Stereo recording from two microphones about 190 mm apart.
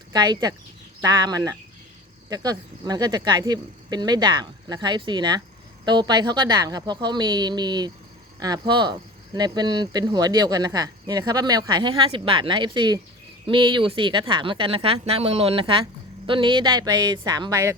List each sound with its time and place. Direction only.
0.1 s speech: 20° right (ahead or behind)